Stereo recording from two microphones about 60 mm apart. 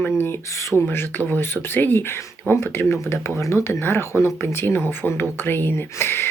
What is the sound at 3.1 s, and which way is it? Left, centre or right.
Speech, left.